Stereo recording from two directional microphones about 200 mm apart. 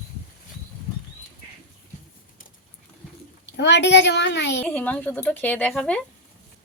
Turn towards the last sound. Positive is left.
turn(degrees=5)  # may be behind; listen again after turning